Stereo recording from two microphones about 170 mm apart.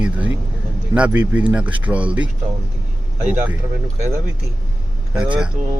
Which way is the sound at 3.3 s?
10° right (ahead or behind).